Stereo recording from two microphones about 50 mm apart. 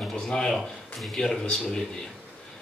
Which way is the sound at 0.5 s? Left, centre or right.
Centre.